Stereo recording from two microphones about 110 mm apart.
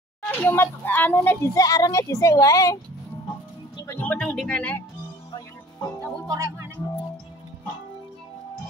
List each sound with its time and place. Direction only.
0.3 s a child's voice: 20° left (ahead or behind)
3.7 s music: 30° left (ahead or behind)
4.0 s speech: 15° left (ahead or behind)
5.3 s music: 35° left (ahead or behind)
6.2 s speech: 30° right (ahead or behind)